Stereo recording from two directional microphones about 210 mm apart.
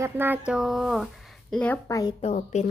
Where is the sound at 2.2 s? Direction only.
30° left (ahead or behind).